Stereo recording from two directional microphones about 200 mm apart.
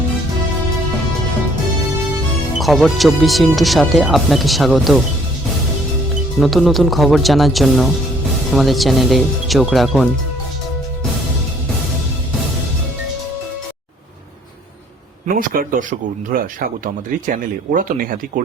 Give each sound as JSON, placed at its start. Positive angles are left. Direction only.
{"t": 2.6, "sound": "speech", "side_deg": 0}
{"t": 6.4, "sound": "speech", "side_deg": 0}
{"t": 15.3, "sound": "speech", "side_deg": -45}